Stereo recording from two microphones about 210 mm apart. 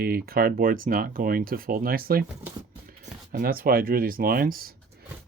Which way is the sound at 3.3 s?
45° right (ahead or behind).